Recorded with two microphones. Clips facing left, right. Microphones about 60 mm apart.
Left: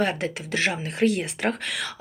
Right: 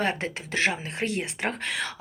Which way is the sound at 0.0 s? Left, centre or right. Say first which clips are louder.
Left 3 dB; right.